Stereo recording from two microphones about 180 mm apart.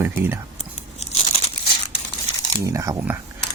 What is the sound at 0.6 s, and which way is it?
Crunch, 35° left (ahead or behind).